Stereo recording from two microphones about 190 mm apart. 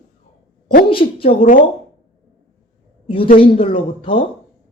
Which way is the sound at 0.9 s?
30° left (ahead or behind).